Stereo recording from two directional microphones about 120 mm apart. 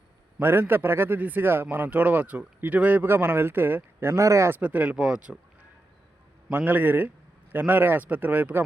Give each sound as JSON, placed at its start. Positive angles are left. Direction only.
{"t": 0.3, "sound": "a man's voice", "side_deg": -20}
{"t": 6.5, "sound": "speech", "side_deg": -15}